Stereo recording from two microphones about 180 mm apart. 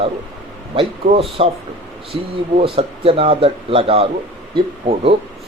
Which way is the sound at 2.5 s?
30° right (ahead or behind).